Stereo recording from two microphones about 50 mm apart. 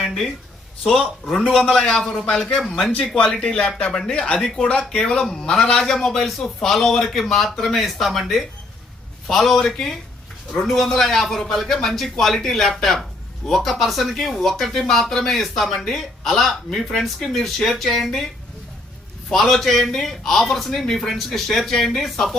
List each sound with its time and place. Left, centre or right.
1.3 s speech: centre
1.6 s speech: left
2.8 s speech: centre
3.4 s speech: centre
19.3 s speech: centre